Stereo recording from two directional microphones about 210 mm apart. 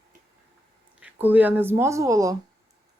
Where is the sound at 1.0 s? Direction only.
10° right (ahead or behind).